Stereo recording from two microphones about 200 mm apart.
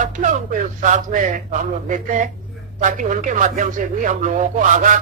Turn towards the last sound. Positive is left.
turn(degrees=-40)  # may be behind; listen again after turning